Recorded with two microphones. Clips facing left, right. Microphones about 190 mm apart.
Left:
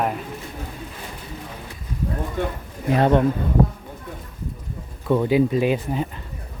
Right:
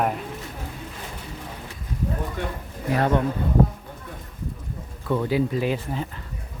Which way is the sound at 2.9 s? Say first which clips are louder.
Left 4 dB; 25° left (ahead or behind).